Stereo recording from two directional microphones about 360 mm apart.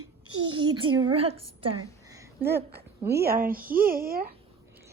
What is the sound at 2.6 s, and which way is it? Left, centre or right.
Speech, right.